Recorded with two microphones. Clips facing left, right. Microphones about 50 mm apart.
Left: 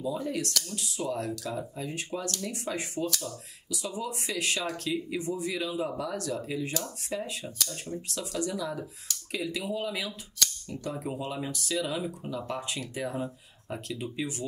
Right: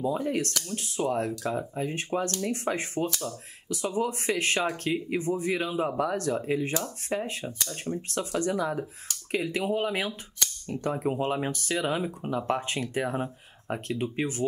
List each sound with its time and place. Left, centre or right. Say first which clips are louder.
0.0 s speech: right 4 dB; right
3.1 s speech: right 1 dB; right
3.6 s speech: right 6 dB; right